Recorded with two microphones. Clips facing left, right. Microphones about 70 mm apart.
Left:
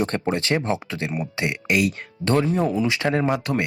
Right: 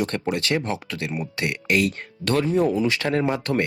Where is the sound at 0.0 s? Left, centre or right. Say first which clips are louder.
Left 1 dB; left.